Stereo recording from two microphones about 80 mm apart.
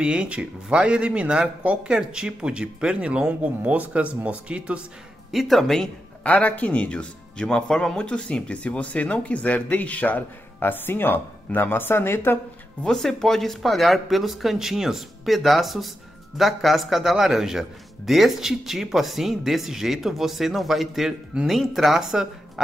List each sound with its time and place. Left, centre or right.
0.0 s speech: centre
5.3 s a man's voice: centre
6.2 s speech: centre
12.8 s a man's voice: centre